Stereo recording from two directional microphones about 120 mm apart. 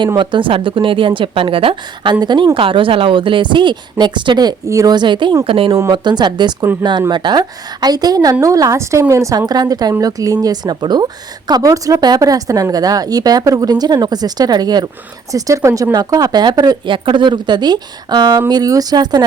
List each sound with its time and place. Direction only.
0.2 s speech: 45° right (ahead or behind)
5.9 s speech: 40° right (ahead or behind)